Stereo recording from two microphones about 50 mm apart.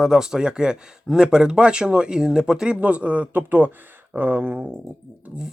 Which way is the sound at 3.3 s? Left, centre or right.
Right.